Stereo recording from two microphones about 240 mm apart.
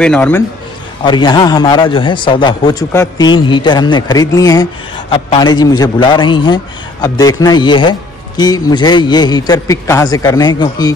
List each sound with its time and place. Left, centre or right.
0.0 s a man's voice: centre
1.0 s a man's voice: centre